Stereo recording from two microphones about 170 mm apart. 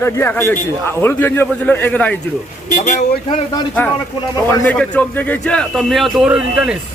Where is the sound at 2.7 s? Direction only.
45° left (ahead or behind).